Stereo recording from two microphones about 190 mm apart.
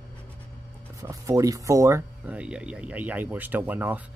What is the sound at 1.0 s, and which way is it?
Speech, 15° right (ahead or behind).